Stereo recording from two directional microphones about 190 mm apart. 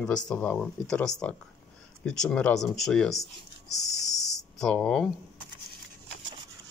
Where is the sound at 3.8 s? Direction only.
20° left (ahead or behind).